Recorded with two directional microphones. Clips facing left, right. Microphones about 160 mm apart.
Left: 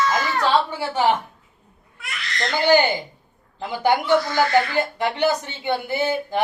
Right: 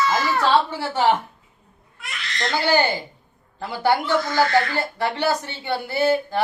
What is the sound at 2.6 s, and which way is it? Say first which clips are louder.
Speech: left 4 dB; 20° left (ahead or behind).